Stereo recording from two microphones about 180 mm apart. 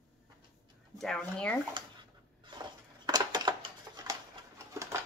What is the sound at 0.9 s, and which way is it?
Speech, 5° left (ahead or behind).